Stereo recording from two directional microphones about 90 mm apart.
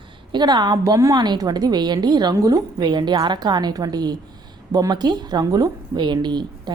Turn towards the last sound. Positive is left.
turn(degrees=-55)  # may be behind; listen again after turning